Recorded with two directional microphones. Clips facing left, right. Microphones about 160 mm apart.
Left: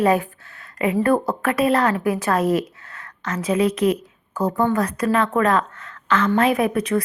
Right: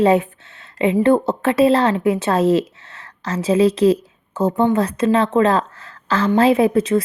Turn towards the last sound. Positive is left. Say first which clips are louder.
# right 5 dB
turn(degrees=-25)  # may be behind; listen again after turning